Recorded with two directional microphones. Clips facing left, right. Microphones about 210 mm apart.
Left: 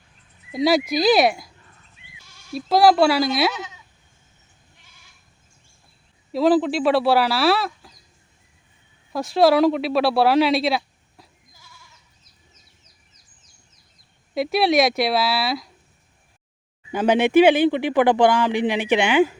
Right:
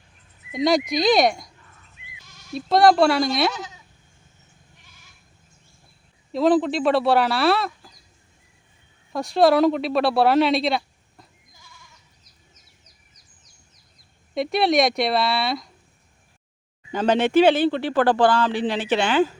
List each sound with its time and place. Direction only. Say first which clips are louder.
0.5 s speech: left 1 dB; 5° left (ahead or behind)
3.5 s bleat: left 1 dB; 35° right (ahead or behind)
6.3 s speech: left 1 dB; centre (ahead or behind)
9.1 s speech: left 1 dB; centre (ahead or behind)
14.3 s speech: left 1 dB; 5° left (ahead or behind)
16.9 s speech: left 2 dB; 10° left (ahead or behind)